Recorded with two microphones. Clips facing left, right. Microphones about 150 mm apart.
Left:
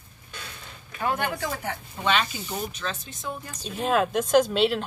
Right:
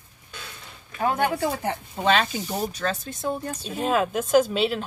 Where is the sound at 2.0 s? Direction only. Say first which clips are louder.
Right 4 dB; 35° right (ahead or behind).